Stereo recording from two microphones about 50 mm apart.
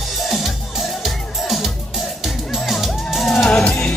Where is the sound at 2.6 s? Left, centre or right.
Centre.